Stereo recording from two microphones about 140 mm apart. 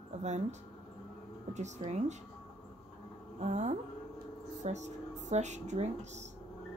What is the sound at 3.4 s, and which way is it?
A woman's voice, 55° right (ahead or behind).